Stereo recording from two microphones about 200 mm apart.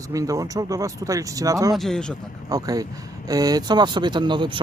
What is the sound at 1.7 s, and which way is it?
Speech, centre (ahead or behind).